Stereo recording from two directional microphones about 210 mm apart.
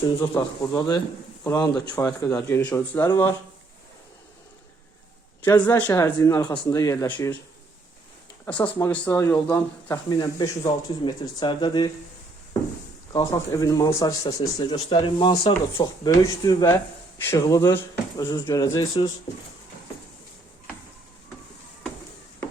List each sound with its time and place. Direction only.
0.2 s speech: 15° left (ahead or behind)
5.5 s speech: 10° left (ahead or behind)
8.4 s speech: 5° left (ahead or behind); by 11.9 s 20° left (ahead or behind)
13.1 s speech: 15° left (ahead or behind)